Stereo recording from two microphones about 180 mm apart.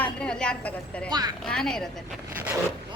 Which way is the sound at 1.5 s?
5° left (ahead or behind).